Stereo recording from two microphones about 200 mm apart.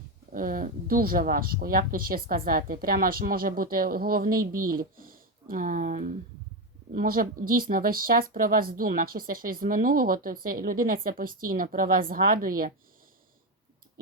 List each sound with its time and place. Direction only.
0.3 s speech: 45° right (ahead or behind)